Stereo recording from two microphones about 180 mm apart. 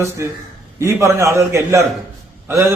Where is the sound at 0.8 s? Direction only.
15° right (ahead or behind).